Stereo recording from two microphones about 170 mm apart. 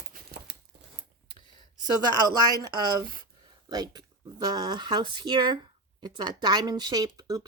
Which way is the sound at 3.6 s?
25° right (ahead or behind).